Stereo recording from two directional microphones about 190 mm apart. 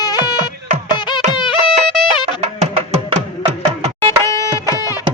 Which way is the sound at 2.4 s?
30° right (ahead or behind).